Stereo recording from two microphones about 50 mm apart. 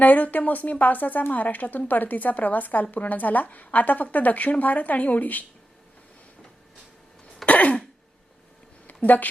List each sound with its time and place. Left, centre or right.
0.0 s a woman's voice: left
7.4 s throat clearing: left
8.9 s a sound: left